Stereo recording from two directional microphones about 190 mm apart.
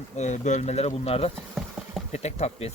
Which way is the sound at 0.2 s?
40° left (ahead or behind).